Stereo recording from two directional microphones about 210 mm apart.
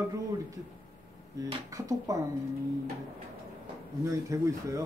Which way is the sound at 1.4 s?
15° right (ahead or behind).